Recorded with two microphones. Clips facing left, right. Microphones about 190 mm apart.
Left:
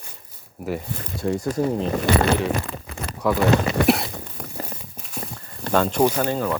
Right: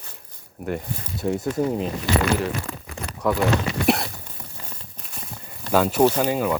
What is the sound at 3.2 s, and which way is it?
Speech, centre (ahead or behind).